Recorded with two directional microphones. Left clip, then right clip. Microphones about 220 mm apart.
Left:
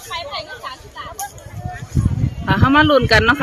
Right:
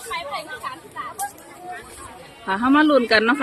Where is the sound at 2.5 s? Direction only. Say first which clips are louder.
Left 4 dB; 10° left (ahead or behind).